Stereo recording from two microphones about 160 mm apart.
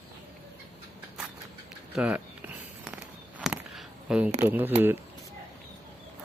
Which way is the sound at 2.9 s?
5° right (ahead or behind).